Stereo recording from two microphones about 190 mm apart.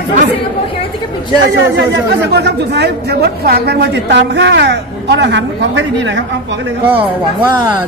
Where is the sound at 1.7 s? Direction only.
65° right (ahead or behind).